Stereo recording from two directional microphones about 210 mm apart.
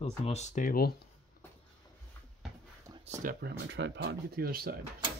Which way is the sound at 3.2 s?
45° right (ahead or behind).